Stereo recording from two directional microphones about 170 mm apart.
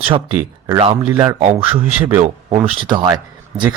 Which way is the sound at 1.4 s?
40° right (ahead or behind).